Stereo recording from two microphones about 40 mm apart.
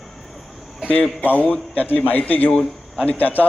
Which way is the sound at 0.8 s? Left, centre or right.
Centre.